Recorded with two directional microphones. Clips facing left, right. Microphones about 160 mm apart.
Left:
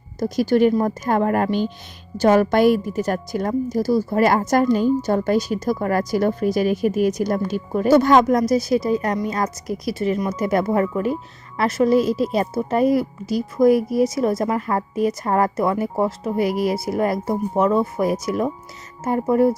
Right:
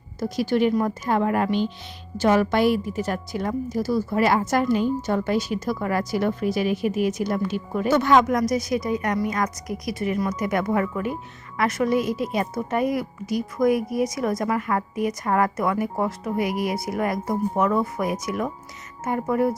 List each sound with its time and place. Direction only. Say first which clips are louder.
0.2 s a woman's voice: left 5 dB; 40° left (ahead or behind)